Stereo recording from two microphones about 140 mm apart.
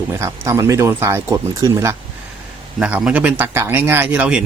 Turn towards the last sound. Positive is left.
turn(degrees=-10)  # may be behind; listen again after turning